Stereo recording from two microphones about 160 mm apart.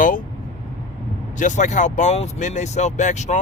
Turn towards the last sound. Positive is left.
turn(degrees=50)  # may be behind; listen again after turning